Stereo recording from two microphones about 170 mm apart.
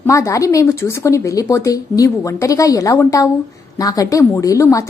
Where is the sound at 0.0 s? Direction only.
20° left (ahead or behind).